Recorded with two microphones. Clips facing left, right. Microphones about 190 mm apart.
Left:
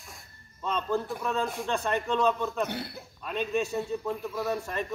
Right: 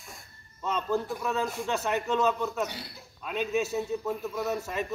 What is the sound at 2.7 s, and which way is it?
Speech, 55° left (ahead or behind).